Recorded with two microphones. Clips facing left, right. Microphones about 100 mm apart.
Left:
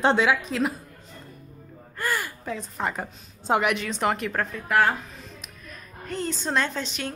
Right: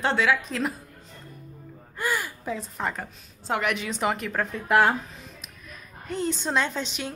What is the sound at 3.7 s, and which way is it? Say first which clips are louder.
Speech: left 1 dB; 10° right (ahead or behind).